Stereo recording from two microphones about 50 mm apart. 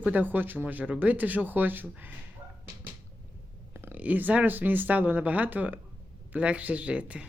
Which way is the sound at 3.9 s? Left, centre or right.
Right.